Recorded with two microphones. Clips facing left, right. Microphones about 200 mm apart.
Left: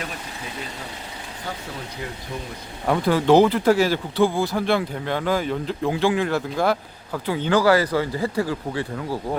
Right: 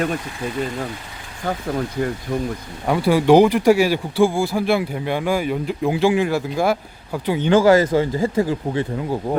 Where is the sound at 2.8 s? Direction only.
5° right (ahead or behind).